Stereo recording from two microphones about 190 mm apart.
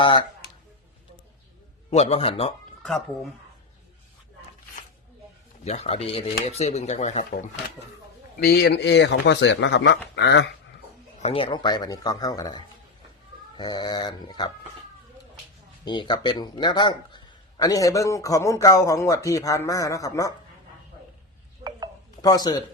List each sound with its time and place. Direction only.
0.0 s speech: 25° left (ahead or behind)
1.9 s speech: 35° left (ahead or behind)
5.6 s speech: 35° left (ahead or behind)
8.4 s speech: 55° left (ahead or behind)
11.2 s speech: 30° left (ahead or behind)
15.8 s speech: 25° left (ahead or behind)
22.2 s speech: 20° left (ahead or behind)